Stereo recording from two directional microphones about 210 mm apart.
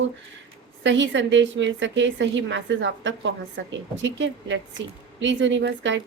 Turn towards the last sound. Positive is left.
turn(degrees=-60)  # may be behind; listen again after turning